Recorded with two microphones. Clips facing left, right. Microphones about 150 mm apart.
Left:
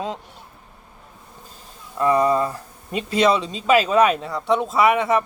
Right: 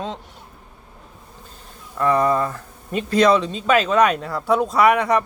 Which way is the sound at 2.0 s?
15° left (ahead or behind).